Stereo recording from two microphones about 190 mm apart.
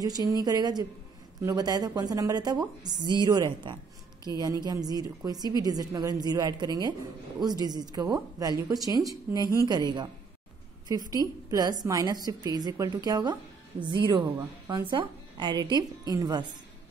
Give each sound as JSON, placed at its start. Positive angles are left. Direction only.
{"t": 0.0, "sound": "a man's voice", "side_deg": -20}